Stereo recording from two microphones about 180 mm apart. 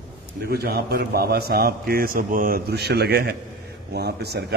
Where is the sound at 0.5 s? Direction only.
60° right (ahead or behind).